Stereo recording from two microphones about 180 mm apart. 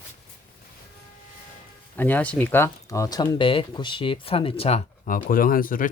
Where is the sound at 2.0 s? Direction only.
10° left (ahead or behind); by 4.8 s 30° left (ahead or behind).